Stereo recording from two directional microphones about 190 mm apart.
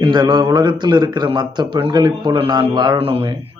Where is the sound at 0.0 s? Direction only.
25° right (ahead or behind).